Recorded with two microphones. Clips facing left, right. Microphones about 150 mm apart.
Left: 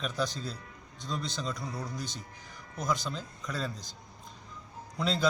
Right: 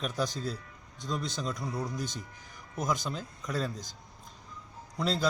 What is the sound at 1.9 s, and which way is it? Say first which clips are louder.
Speech: right 3 dB; 50° right (ahead or behind).